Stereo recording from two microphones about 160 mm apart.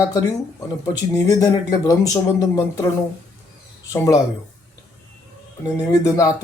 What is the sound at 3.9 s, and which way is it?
Speech, 20° left (ahead or behind).